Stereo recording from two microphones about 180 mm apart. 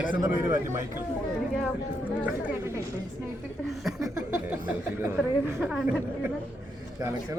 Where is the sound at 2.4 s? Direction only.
15° right (ahead or behind).